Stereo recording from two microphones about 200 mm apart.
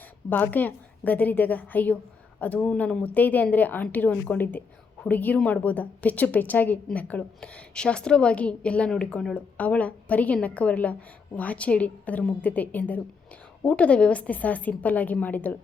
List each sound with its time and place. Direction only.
0.3 s a woman's voice: 10° left (ahead or behind)